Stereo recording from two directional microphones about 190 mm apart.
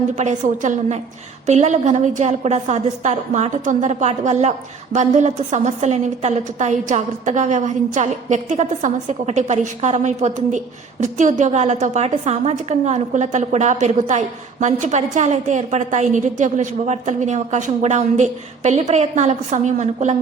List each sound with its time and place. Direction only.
0.2 s a woman's voice: 40° right (ahead or behind)